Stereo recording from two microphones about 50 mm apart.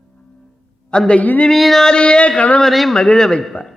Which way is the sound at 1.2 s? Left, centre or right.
Left.